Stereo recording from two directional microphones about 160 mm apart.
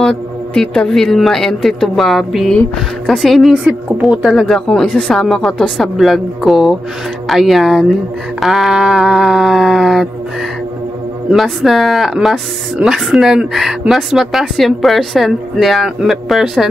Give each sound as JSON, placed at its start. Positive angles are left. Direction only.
{"t": 0.0, "sound": "speech", "side_deg": 5}
{"t": 11.2, "sound": "speech", "side_deg": 0}